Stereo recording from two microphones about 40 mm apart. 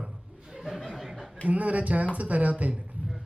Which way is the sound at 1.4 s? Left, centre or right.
Right.